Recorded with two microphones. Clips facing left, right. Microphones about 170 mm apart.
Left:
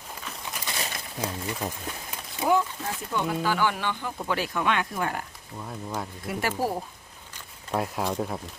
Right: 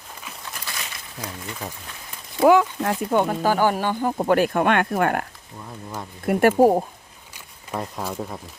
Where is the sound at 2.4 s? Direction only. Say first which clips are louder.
Right 8 dB; 90° right; by 5.2 s 60° right (ahead or behind).